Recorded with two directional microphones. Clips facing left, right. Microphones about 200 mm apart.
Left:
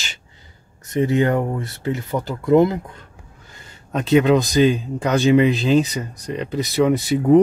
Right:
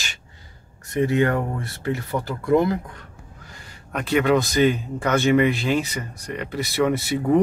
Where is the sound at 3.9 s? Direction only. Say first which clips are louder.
Left 4 dB; 20° left (ahead or behind).